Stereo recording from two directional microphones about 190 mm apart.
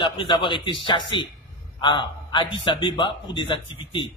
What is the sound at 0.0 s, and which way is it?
A man's voice, 25° left (ahead or behind).